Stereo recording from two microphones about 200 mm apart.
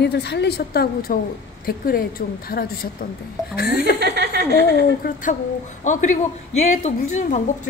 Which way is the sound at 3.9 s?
55° right (ahead or behind).